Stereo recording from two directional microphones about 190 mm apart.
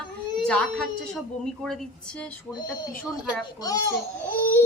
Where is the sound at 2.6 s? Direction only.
20° left (ahead or behind).